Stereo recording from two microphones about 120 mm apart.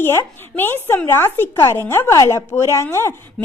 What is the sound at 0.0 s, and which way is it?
Speech, 20° left (ahead or behind).